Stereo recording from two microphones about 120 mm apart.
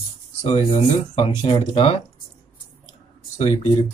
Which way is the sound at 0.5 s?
50° left (ahead or behind).